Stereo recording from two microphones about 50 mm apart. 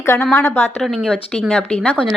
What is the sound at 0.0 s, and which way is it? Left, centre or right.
Speech, left.